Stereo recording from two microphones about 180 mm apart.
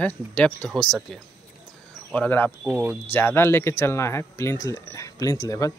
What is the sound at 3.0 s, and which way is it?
Speech, 15° left (ahead or behind).